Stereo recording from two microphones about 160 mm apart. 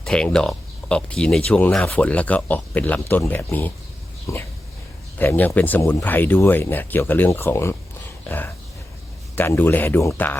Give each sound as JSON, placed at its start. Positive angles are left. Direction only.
{"t": 0.0, "sound": "speech", "side_deg": 5}